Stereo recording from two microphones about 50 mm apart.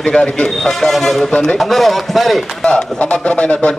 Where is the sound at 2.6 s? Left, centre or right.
Left.